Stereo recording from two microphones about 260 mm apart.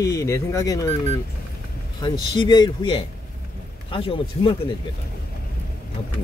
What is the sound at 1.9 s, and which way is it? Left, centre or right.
A man's voice, centre.